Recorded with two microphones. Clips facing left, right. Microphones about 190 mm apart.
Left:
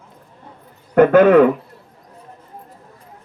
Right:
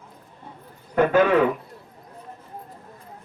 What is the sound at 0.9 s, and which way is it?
Speech, 60° left (ahead or behind).